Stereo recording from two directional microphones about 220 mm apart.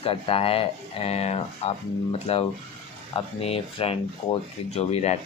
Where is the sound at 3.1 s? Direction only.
25° left (ahead or behind).